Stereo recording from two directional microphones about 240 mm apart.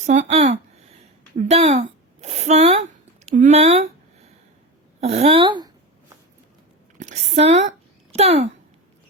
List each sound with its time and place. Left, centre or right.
0.0 s speech: right
4.9 s a woman's voice: right
7.0 s a woman's voice: right
7.7 s a sound: right